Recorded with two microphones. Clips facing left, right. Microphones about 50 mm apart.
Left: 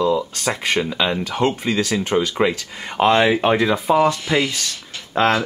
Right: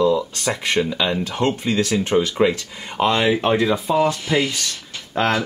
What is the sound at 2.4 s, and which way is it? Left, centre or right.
Speech, centre.